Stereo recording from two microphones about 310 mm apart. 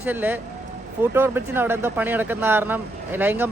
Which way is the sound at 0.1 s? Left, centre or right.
Centre.